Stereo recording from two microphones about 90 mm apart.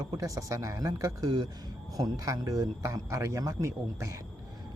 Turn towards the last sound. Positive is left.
turn(degrees=-35)  # may be behind; listen again after turning